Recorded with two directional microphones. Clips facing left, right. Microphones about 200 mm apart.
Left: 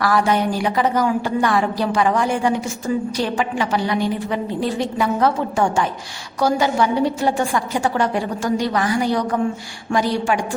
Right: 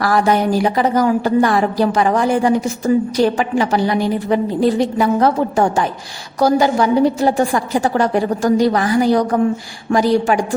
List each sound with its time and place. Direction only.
0.0 s a woman's voice: 40° right (ahead or behind)